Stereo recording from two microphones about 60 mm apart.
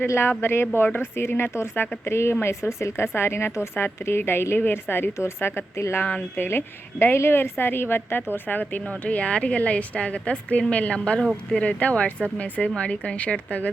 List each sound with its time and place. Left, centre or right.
0.1 s a woman's voice: left
5.7 s speech: left
6.3 s a woman's voice: left